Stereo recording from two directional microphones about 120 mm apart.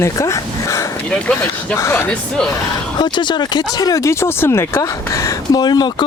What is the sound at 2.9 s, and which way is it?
Speech, 40° left (ahead or behind).